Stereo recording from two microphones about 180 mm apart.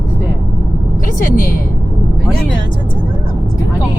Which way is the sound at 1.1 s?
50° left (ahead or behind).